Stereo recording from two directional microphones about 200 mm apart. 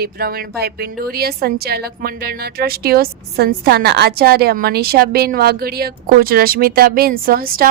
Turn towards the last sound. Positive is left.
turn(degrees=-45)  # may be behind; listen again after turning